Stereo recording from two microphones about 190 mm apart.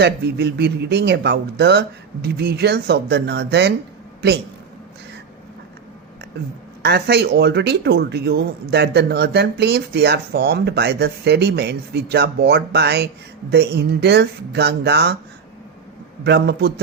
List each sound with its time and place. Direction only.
0.0 s speech: 60° right (ahead or behind)
6.8 s speech: 60° right (ahead or behind)
16.2 s speech: 60° right (ahead or behind)